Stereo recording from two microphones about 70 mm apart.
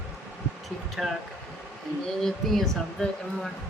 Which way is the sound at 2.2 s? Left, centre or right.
Centre.